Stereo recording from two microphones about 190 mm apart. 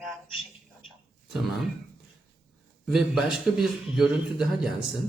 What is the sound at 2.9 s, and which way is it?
A man's voice, centre (ahead or behind).